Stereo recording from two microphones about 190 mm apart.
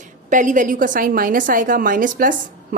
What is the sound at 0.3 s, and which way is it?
A woman's voice, 45° right (ahead or behind).